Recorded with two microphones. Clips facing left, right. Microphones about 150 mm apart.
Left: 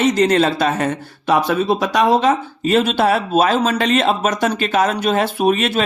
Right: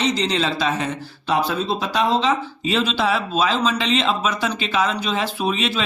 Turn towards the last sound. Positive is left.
turn(degrees=50)  # may be behind; listen again after turning